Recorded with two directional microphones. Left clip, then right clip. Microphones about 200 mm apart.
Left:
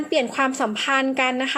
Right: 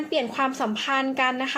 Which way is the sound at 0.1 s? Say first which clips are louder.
Left 4 dB; 25° left (ahead or behind).